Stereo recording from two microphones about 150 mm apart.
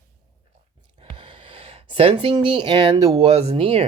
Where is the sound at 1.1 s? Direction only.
35° right (ahead or behind).